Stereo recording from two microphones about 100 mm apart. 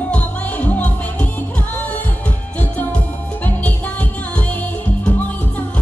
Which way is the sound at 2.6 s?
15° left (ahead or behind).